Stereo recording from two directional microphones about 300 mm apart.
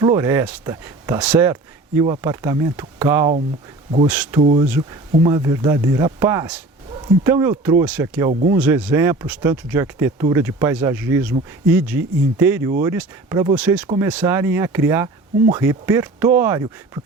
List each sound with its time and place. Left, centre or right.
0.0 s speech: centre
4.4 s speech: centre
8.3 s speech: right
8.5 s speech: centre
12.4 s speech: centre